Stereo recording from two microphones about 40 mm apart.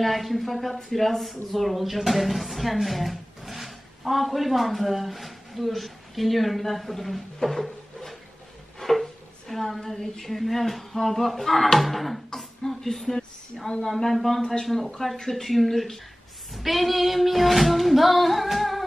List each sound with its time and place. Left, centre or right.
0.0 s a woman's voice: centre
7.3 s a sound: centre
8.7 s a woman's voice: centre
14.4 s a woman's voice: centre